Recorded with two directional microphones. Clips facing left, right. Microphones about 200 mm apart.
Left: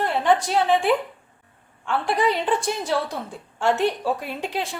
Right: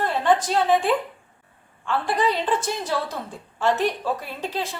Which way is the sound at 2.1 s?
15° left (ahead or behind).